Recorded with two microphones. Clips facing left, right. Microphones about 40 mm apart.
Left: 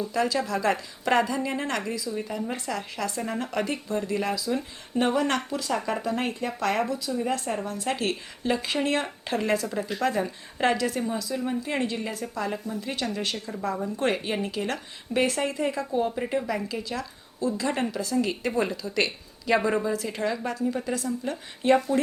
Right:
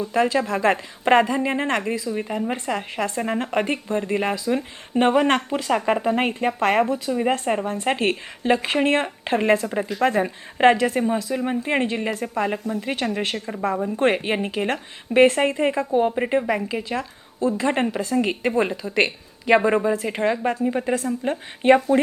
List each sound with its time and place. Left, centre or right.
0.0 s speech: right
12.5 s a woman's voice: right